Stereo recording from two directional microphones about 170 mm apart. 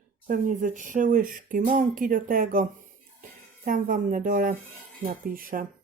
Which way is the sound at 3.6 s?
55° right (ahead or behind).